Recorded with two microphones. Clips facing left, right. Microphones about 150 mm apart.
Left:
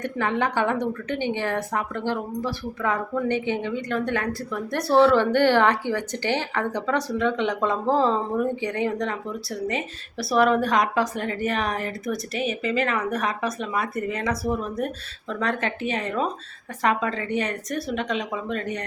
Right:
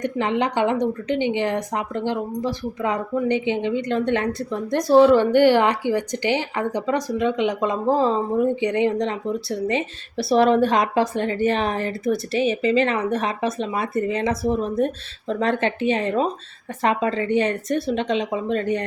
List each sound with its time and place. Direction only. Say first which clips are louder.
0.0 s a woman's voice: right 3 dB; 20° right (ahead or behind)